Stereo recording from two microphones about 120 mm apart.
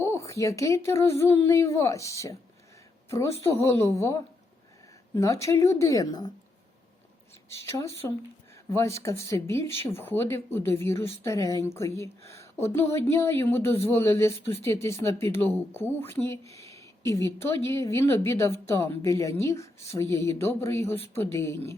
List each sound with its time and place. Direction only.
0.0 s a woman's voice: 25° left (ahead or behind)
7.7 s a woman's voice: 20° left (ahead or behind)